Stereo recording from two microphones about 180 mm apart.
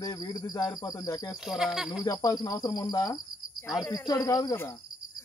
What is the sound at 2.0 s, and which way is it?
Speech, 20° left (ahead or behind).